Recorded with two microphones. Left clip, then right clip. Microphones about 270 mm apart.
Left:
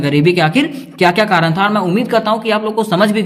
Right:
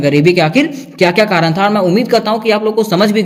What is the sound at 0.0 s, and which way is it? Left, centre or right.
A man's voice, centre.